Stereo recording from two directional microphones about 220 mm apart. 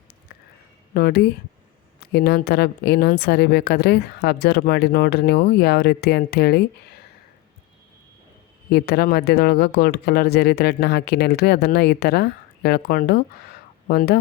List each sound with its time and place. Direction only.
0.9 s a woman's voice: 45° left (ahead or behind)
8.7 s a woman's voice: 45° left (ahead or behind)